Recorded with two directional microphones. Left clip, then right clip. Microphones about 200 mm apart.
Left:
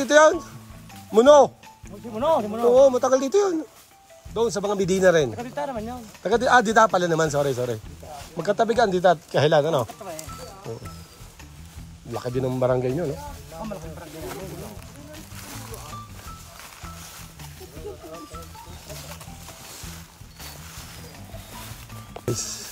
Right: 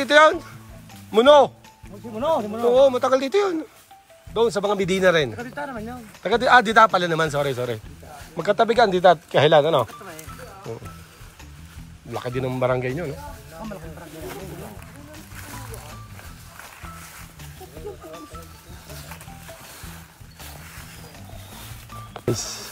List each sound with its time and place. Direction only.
0.0 s speech: 20° left (ahead or behind)
2.0 s speech: 5° left (ahead or behind)
2.7 s speech: 20° left (ahead or behind)
10.7 s speech: centre (ahead or behind)
12.2 s speech: 20° left (ahead or behind)
13.6 s snake: centre (ahead or behind)
15.1 s music: centre (ahead or behind)
18.9 s music: centre (ahead or behind)
22.2 s music: 5° left (ahead or behind)